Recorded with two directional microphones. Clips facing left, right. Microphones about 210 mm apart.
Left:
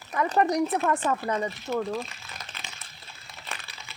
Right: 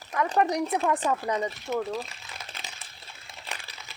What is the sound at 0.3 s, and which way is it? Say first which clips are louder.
Speech: left 2 dB; 5° right (ahead or behind).